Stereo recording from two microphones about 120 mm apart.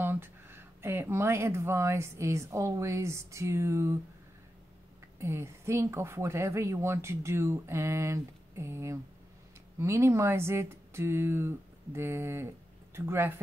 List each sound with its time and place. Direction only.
0.0 s speech: 20° right (ahead or behind)
5.2 s speech: 20° right (ahead or behind)